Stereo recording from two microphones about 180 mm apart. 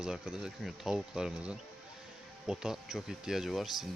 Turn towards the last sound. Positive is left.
turn(degrees=0)  # may be behind; listen again after turning